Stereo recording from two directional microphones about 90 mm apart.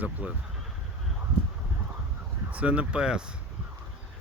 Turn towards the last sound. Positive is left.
turn(degrees=-10)  # may be behind; listen again after turning